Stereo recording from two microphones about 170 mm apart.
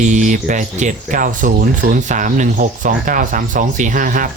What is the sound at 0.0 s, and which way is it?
Speech, 45° right (ahead or behind).